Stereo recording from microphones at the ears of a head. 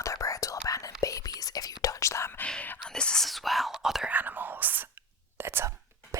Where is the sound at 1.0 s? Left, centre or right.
Left.